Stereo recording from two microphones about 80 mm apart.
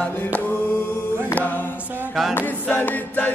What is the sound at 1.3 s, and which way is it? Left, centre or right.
A capella, left.